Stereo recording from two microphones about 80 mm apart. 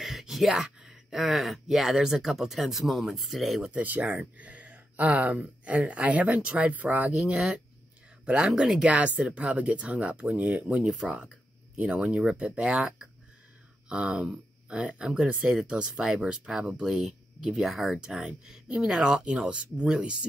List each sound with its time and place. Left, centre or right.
0.0 s a sound: centre
0.7 s speech: centre
3.7 s speech: centre